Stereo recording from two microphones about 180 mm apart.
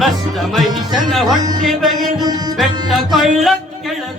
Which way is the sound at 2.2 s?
20° right (ahead or behind).